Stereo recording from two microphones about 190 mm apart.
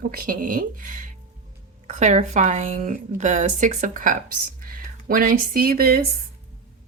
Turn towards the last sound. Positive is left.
turn(degrees=-50)  # may be behind; listen again after turning